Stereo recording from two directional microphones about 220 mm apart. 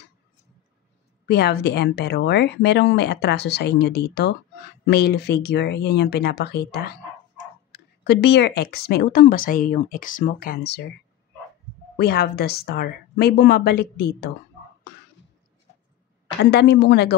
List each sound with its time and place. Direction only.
1.2 s a woman's voice: 50° left (ahead or behind)
12.0 s a woman's voice: 45° left (ahead or behind)
16.4 s a woman's voice: 50° left (ahead or behind)